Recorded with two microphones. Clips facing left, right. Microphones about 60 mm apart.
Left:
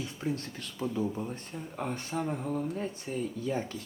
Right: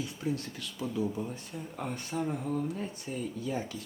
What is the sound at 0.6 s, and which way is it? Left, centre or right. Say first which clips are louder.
Speech: left 2 dB; left.